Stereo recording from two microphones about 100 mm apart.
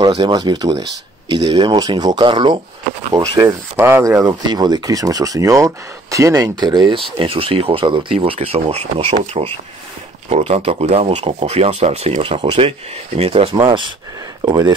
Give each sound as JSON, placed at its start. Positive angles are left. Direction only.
{"t": 0.0, "sound": "speech", "side_deg": -50}
{"t": 3.1, "sound": "speech", "side_deg": -35}
{"t": 3.7, "sound": "speech", "side_deg": -25}
{"t": 4.5, "sound": "speech", "side_deg": -45}
{"t": 7.2, "sound": "speech", "side_deg": -65}
{"t": 13.6, "sound": "speech", "side_deg": -50}